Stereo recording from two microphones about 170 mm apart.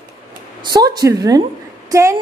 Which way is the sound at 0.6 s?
25° right (ahead or behind).